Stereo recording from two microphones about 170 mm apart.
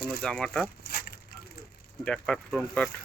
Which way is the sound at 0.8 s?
65° left (ahead or behind).